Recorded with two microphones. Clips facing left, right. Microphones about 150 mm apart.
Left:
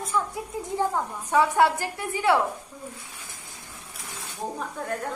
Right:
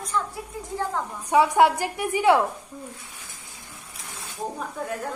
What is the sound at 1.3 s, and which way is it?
A child's voice, 15° right (ahead or behind).